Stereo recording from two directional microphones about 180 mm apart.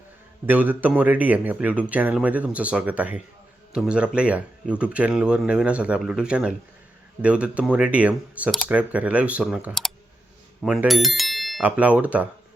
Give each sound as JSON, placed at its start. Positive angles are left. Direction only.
{"t": 0.4, "sound": "speech", "side_deg": -10}